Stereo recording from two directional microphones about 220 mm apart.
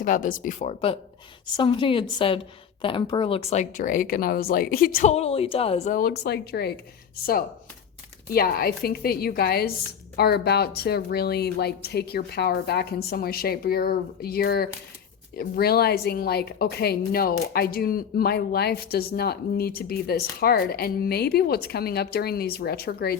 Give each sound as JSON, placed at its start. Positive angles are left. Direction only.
{"t": 0.0, "sound": "a woman's voice", "side_deg": 40}
{"t": 8.3, "sound": "a woman's voice", "side_deg": 45}